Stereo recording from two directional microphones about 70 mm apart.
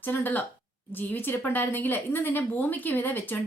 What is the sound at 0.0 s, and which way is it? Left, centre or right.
Speech, left.